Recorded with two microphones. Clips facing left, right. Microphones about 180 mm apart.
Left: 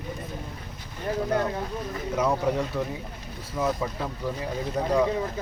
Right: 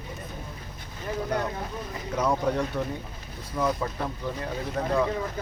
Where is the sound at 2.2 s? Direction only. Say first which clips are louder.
Even; 5° left (ahead or behind).